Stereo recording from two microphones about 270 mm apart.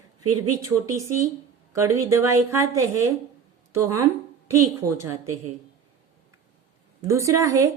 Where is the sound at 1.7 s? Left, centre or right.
Centre.